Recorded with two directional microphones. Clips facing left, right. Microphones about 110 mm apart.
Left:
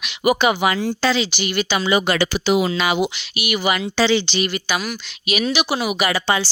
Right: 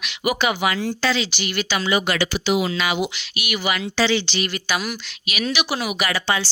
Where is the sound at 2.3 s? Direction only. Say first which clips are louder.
Left 3 dB; 40° left (ahead or behind).